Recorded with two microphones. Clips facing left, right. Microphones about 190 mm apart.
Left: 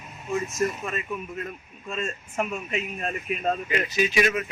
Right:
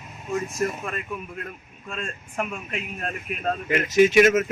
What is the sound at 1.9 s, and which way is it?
A man's voice, centre (ahead or behind).